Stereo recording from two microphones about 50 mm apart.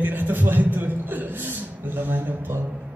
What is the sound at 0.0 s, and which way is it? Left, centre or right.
A man's voice, right.